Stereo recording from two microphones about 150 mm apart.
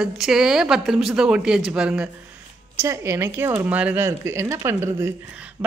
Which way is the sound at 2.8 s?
20° right (ahead or behind).